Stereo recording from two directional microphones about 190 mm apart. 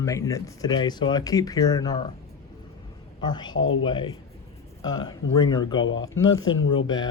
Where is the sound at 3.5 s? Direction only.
90° left.